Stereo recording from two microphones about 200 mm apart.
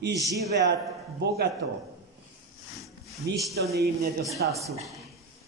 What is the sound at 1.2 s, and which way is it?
Speech, 55° right (ahead or behind).